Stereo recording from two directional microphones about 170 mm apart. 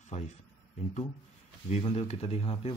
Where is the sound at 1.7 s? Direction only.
40° left (ahead or behind).